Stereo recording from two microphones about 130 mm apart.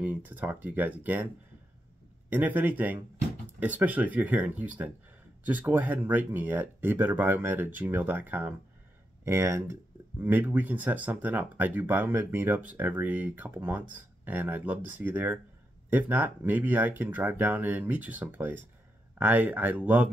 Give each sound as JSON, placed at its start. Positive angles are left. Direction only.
{"t": 0.0, "sound": "speech", "side_deg": -15}